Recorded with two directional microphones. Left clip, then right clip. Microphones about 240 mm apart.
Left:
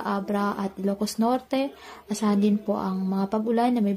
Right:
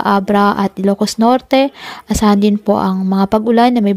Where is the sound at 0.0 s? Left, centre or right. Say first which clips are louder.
Right 15 dB; right.